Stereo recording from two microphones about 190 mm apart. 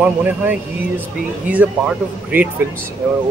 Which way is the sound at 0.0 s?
10° right (ahead or behind).